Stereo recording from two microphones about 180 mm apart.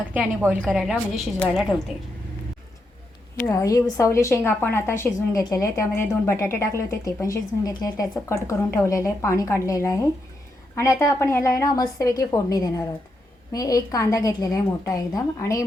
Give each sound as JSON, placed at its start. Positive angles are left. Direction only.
{"t": 0.0, "sound": "a woman's voice", "side_deg": -10}
{"t": 3.4, "sound": "a woman's voice", "side_deg": 15}